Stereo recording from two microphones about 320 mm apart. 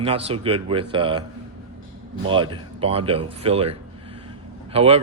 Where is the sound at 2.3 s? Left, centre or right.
Centre.